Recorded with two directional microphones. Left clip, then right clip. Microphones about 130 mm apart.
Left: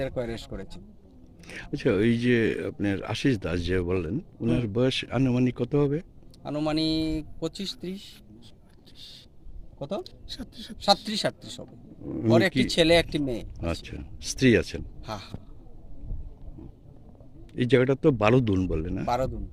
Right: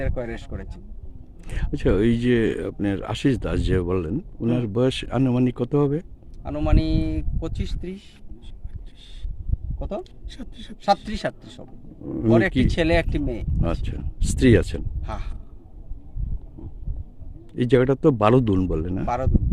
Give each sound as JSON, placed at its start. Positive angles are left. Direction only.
{"t": 0.0, "sound": "speech", "side_deg": 10}
{"t": 1.5, "sound": "speech", "side_deg": -35}
{"t": 6.4, "sound": "speech", "side_deg": 15}
{"t": 9.7, "sound": "speech", "side_deg": 5}
{"t": 10.3, "sound": "a woman's voice", "side_deg": -25}
{"t": 11.2, "sound": "speech", "side_deg": 10}
{"t": 13.6, "sound": "speech", "side_deg": -35}
{"t": 15.0, "sound": "a sound", "side_deg": 15}
{"t": 17.5, "sound": "speech", "side_deg": -35}
{"t": 19.0, "sound": "speech", "side_deg": 10}